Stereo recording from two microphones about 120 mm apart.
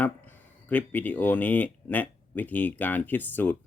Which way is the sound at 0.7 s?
15° left (ahead or behind).